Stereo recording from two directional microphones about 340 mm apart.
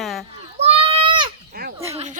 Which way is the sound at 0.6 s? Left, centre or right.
Centre.